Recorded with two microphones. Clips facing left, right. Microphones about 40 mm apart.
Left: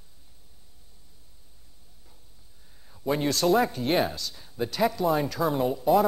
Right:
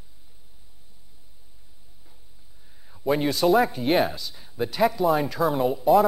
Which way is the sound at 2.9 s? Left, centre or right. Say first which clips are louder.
Right 3 dB; centre.